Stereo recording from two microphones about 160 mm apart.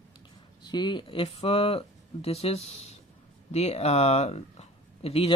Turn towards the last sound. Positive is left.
turn(degrees=40)  # may be behind; listen again after turning